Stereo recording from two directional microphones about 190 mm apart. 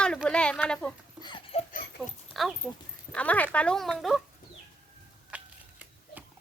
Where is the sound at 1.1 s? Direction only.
25° left (ahead or behind).